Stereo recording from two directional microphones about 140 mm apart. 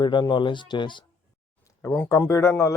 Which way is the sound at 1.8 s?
15° left (ahead or behind).